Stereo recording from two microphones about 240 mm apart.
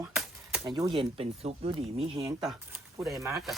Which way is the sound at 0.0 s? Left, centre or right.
Centre.